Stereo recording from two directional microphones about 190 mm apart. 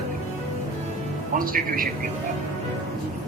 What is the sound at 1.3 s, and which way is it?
Speech, 50° right (ahead or behind).